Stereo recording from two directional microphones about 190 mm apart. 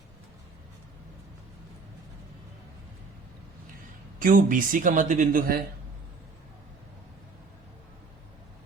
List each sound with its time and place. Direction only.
4.2 s speech: 45° right (ahead or behind)